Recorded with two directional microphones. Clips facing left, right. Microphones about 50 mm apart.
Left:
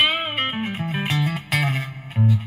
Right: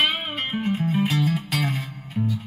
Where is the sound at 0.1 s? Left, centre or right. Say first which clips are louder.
Left 3 dB; left.